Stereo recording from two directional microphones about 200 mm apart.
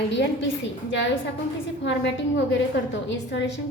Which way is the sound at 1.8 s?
60° left (ahead or behind).